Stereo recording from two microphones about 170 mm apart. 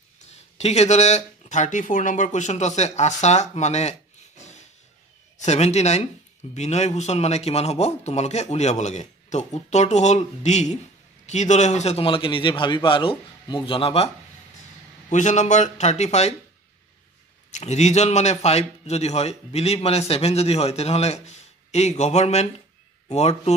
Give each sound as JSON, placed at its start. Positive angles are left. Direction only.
{"t": 0.3, "sound": "speech", "side_deg": 40}
{"t": 5.4, "sound": "a man's voice", "side_deg": 40}
{"t": 15.0, "sound": "speech", "side_deg": 45}
{"t": 17.5, "sound": "a man's voice", "side_deg": 40}